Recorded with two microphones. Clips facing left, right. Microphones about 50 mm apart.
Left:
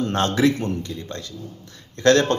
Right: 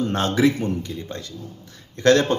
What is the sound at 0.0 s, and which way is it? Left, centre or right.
Speech, centre.